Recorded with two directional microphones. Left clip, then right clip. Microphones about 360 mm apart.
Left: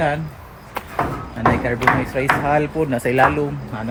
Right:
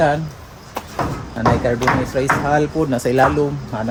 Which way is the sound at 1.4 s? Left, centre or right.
Left.